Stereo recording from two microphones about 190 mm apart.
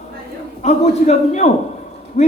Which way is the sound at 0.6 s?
35° left (ahead or behind).